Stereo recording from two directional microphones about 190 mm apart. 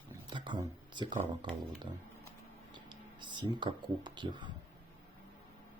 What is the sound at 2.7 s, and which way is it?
Speech, 25° right (ahead or behind).